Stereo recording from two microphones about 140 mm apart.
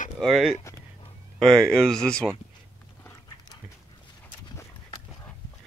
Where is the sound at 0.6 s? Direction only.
20° left (ahead or behind).